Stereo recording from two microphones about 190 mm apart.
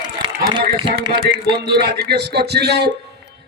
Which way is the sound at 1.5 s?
25° right (ahead or behind).